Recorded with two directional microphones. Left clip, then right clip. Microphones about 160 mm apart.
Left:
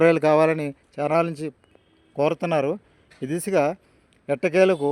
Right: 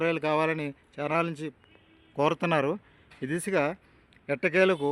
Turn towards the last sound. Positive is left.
turn(degrees=25)  # may be behind; listen again after turning